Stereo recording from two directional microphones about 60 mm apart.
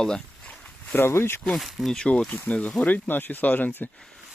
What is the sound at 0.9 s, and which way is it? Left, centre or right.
Speech, left.